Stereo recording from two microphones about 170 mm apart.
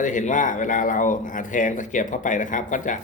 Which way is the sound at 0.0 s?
50° left (ahead or behind).